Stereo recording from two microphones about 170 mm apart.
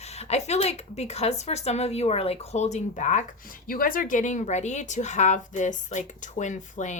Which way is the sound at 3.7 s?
55° left (ahead or behind).